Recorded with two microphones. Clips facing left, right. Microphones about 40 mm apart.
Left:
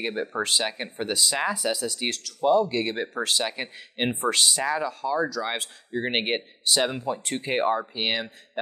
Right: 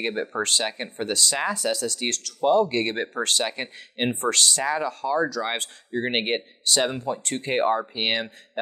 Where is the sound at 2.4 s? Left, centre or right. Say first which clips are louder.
Right 1 dB; right.